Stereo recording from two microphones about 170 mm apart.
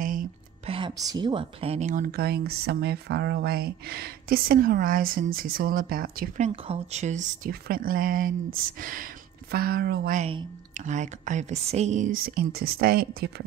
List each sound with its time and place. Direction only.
0.0 s a sound: 55° right (ahead or behind)
0.7 s speech: 30° right (ahead or behind)
1.9 s speech: 60° right (ahead or behind)
7.6 s speech: 60° right (ahead or behind)
10.8 s speech: 45° right (ahead or behind); by 13.3 s 60° right (ahead or behind)